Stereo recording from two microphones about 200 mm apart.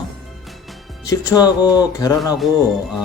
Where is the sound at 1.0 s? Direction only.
20° left (ahead or behind).